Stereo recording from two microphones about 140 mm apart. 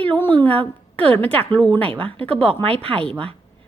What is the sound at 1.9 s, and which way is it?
Speech, 10° left (ahead or behind).